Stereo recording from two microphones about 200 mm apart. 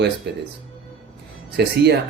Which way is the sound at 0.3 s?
55° right (ahead or behind).